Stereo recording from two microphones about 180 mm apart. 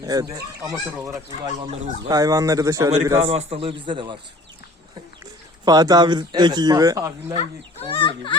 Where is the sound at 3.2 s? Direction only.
35° right (ahead or behind).